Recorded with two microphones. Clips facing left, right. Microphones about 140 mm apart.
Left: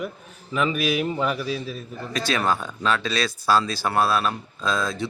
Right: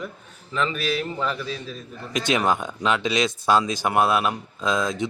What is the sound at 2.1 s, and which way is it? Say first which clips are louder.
A man's voice: right 2 dB; 20° right (ahead or behind).